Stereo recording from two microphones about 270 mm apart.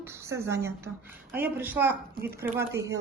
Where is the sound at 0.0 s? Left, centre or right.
Centre.